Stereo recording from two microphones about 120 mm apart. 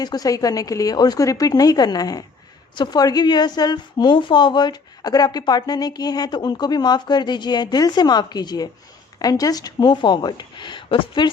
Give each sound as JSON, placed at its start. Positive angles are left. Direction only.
{"t": 0.0, "sound": "a woman's voice", "side_deg": 35}